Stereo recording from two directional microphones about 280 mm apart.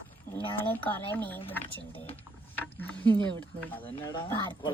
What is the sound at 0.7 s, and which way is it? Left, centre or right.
Speech, centre.